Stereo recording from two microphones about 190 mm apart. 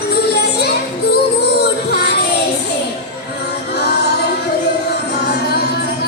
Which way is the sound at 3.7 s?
60° left (ahead or behind).